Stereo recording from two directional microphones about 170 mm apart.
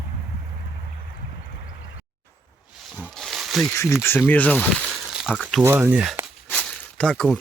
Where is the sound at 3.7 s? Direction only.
15° left (ahead or behind).